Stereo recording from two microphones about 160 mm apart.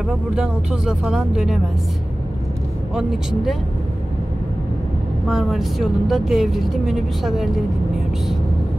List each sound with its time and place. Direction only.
0.4 s speech: 5° right (ahead or behind)
2.9 s speech: centre (ahead or behind)
5.3 s speech: centre (ahead or behind)